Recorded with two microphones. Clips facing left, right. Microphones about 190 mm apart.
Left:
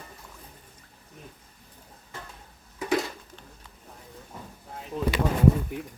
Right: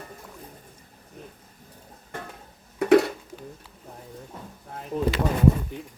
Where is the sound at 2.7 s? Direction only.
60° right (ahead or behind).